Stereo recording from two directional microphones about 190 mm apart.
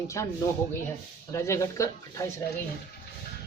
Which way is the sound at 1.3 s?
15° left (ahead or behind).